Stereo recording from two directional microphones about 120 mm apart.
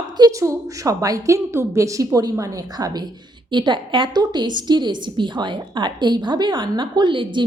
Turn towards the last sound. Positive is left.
turn(degrees=-40)  # may be behind; listen again after turning